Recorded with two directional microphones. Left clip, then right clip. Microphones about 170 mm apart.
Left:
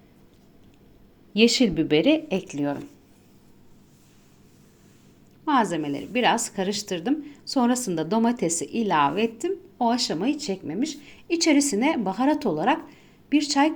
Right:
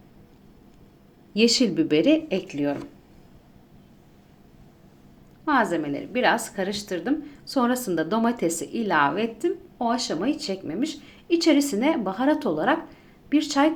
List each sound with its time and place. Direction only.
1.3 s a woman's voice: 20° left (ahead or behind); by 2.7 s 40° left (ahead or behind)
5.5 s a woman's voice: 40° left (ahead or behind)